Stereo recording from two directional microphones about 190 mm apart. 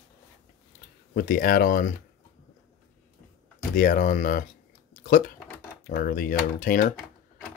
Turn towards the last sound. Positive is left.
turn(degrees=45)  # may be behind; listen again after turning